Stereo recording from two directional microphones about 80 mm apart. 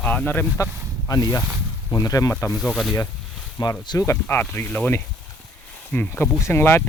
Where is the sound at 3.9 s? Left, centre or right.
Left.